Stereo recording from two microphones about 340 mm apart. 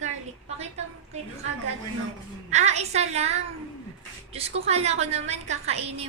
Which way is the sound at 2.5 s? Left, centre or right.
Centre.